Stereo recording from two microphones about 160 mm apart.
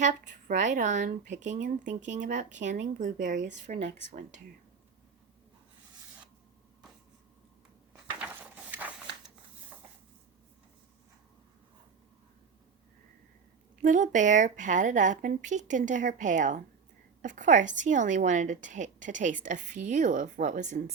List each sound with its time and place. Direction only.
0.0 s a woman's voice: 50° right (ahead or behind)
8.2 s a sound: 10° right (ahead or behind)
13.8 s a woman's voice: 50° right (ahead or behind)